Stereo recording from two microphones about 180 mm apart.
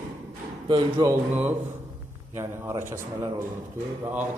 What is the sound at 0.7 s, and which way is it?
Speech, 25° right (ahead or behind).